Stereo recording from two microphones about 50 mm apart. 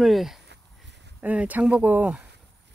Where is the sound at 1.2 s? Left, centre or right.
Right.